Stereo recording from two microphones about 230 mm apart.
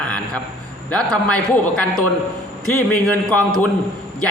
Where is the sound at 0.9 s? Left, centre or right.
Centre.